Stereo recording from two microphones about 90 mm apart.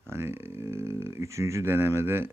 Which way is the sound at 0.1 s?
25° right (ahead or behind).